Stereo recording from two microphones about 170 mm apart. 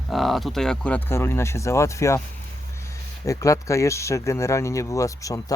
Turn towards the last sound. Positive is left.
turn(degrees=20)  # may be behind; listen again after turning